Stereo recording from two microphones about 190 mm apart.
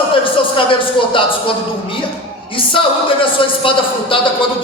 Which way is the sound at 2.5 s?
25° left (ahead or behind).